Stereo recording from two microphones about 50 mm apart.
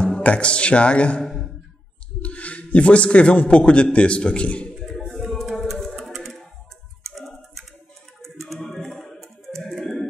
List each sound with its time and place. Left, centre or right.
0.2 s a man's voice: left
1.2 s a sound: centre
2.2 s music: left
2.7 s a man's voice: left
4.7 s music: centre
5.3 s a sound: centre
7.1 s typing: centre
8.2 s a sound: centre
8.5 s music: centre